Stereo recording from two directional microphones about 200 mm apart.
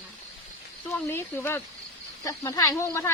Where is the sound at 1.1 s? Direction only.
10° left (ahead or behind).